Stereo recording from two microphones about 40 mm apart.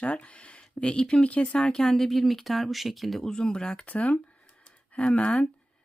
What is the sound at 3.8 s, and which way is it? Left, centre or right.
Speech, left.